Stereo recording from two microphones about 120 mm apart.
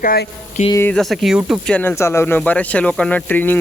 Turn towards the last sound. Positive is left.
turn(degrees=15)  # may be behind; listen again after turning